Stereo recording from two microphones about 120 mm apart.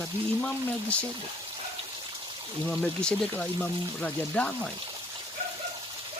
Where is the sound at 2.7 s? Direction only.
5° left (ahead or behind).